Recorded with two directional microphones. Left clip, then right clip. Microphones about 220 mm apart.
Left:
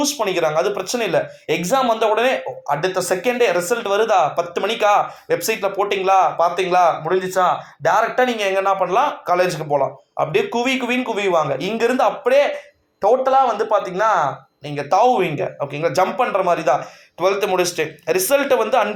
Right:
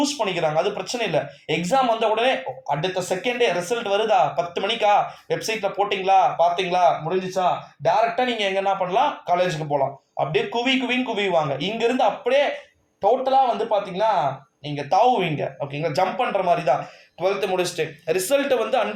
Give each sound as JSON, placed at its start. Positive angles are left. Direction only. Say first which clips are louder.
{"t": 0.0, "sound": "speech", "louder": "left 3 dB", "side_deg": 25}
{"t": 14.8, "sound": "a man's voice", "louder": "left 3 dB", "side_deg": 25}